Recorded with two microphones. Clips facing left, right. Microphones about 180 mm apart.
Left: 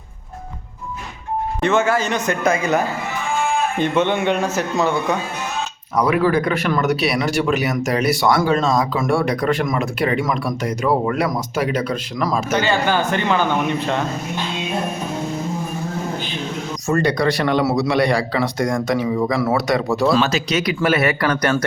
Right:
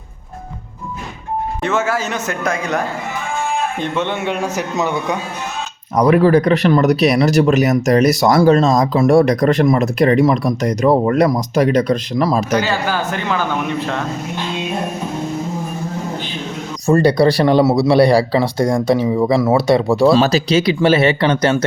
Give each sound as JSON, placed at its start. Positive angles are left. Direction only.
{"t": 1.6, "sound": "a man's voice", "side_deg": -5}
{"t": 6.0, "sound": "speech", "side_deg": -40}
{"t": 12.5, "sound": "speech", "side_deg": -5}
{"t": 16.8, "sound": "speech", "side_deg": -35}